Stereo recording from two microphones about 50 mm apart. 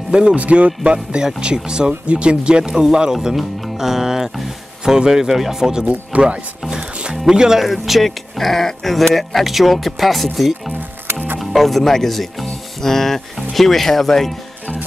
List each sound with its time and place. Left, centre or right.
0.1 s speech: centre
0.4 s a man's voice: right
0.9 s speech: centre
5.9 s a man's voice: right
7.2 s speech: centre